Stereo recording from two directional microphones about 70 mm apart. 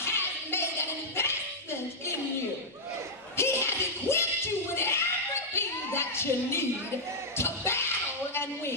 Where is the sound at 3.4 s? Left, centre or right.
Left.